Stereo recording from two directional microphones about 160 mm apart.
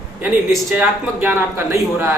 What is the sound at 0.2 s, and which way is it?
A man's voice, 10° right (ahead or behind).